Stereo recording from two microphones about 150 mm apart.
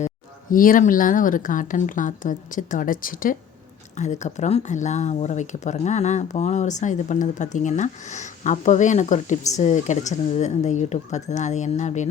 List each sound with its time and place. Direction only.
0.5 s speech: 65° left (ahead or behind)
3.9 s speech: 50° left (ahead or behind)